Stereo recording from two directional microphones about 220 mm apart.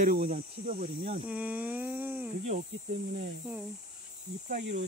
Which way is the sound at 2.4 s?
30° right (ahead or behind).